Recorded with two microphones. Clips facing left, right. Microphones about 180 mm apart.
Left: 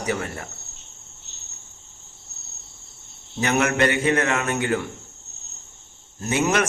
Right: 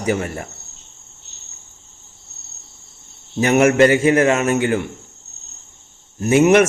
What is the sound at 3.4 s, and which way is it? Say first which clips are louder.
A man's voice: right 8 dB; 25° right (ahead or behind).